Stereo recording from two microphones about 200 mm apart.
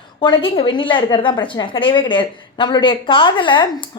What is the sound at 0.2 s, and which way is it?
A woman's voice, 25° left (ahead or behind).